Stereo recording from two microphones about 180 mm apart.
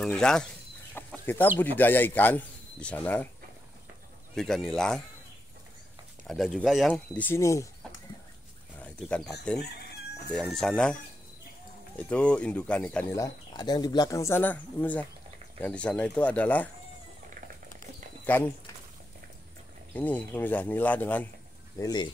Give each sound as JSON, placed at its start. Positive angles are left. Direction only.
{"t": 0.0, "sound": "speech", "side_deg": 5}
{"t": 4.4, "sound": "speech", "side_deg": 5}
{"t": 6.2, "sound": "speech", "side_deg": 0}
{"t": 6.9, "sound": "speech", "side_deg": 10}
{"t": 8.7, "sound": "speech", "side_deg": 5}
{"t": 9.6, "sound": "speech", "side_deg": 65}
{"t": 10.3, "sound": "speech", "side_deg": 0}
{"t": 12.0, "sound": "speech", "side_deg": 5}
{"t": 13.2, "sound": "speech", "side_deg": 25}
{"t": 18.2, "sound": "speech", "side_deg": 10}
{"t": 20.0, "sound": "speech", "side_deg": 10}
{"t": 21.7, "sound": "speech", "side_deg": 25}